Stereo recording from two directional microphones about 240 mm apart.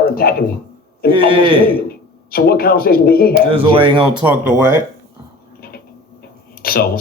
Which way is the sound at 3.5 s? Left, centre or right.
Right.